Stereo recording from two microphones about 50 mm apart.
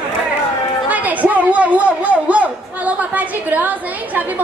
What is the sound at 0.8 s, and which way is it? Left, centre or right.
A man's voice, right.